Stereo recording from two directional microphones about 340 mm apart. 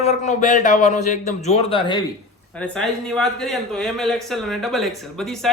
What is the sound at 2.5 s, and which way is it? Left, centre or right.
A man's voice, centre.